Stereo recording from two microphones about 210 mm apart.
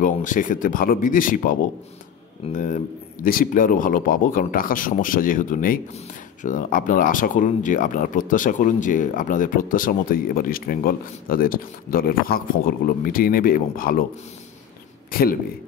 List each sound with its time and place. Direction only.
0.0 s speech: 40° left (ahead or behind)
15.0 s speech: 45° left (ahead or behind)